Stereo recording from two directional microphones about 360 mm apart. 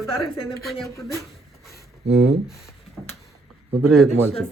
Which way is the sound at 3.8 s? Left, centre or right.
Centre.